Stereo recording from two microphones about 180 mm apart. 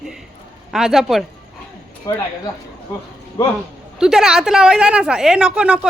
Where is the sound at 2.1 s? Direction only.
20° left (ahead or behind).